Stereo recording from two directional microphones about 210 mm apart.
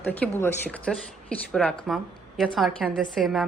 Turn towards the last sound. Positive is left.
turn(degrees=0)  # may be behind; listen again after turning